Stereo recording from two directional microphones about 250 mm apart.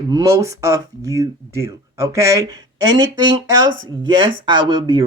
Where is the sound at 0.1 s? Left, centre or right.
Centre.